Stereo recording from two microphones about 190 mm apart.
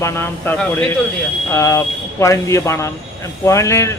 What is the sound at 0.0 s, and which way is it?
A man's voice, 10° left (ahead or behind).